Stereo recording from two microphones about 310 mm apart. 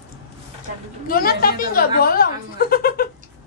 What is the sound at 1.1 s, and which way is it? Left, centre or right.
Speech, left.